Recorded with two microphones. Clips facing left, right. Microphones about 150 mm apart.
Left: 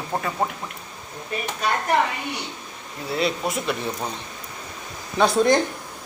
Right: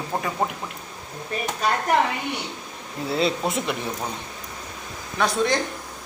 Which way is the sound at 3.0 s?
25° right (ahead or behind).